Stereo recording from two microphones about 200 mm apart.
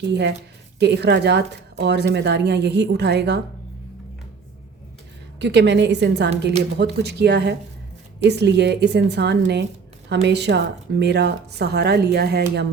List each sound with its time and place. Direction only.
0.1 s a woman's voice: 60° right (ahead or behind)
5.4 s a woman's voice: 60° right (ahead or behind)